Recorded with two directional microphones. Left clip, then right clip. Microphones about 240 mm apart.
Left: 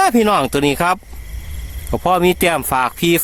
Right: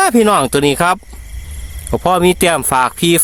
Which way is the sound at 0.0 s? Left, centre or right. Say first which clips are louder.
Right 2 dB; centre.